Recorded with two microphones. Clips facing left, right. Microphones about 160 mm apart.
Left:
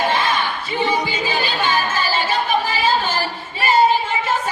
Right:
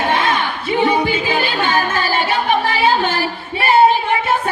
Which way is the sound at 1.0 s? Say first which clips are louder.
Right 4 dB; 60° right (ahead or behind).